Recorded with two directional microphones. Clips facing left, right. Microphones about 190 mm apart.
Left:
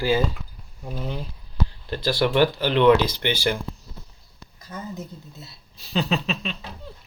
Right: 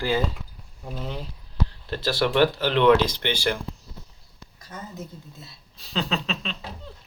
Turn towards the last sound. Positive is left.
turn(degrees=5)  # may be behind; listen again after turning